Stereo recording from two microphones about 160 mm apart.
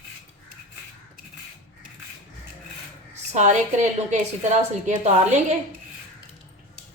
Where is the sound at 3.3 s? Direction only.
50° right (ahead or behind).